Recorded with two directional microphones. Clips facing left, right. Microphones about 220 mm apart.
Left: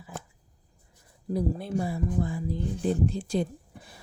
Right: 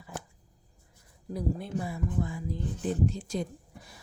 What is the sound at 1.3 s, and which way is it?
Speech, 35° left (ahead or behind).